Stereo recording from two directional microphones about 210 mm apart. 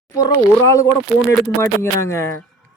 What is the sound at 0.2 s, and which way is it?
Speech, 15° left (ahead or behind).